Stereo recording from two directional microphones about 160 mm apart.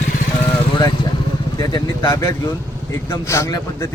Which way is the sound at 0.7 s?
25° left (ahead or behind).